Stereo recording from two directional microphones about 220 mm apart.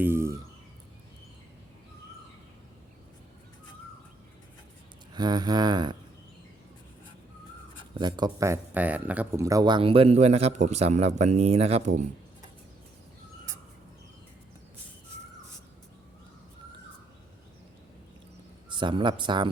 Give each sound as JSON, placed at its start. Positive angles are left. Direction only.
{"t": 0.0, "sound": "a sound", "side_deg": -10}
{"t": 5.1, "sound": "speech", "side_deg": -20}
{"t": 7.9, "sound": "speech", "side_deg": -20}
{"t": 18.7, "sound": "speech", "side_deg": -20}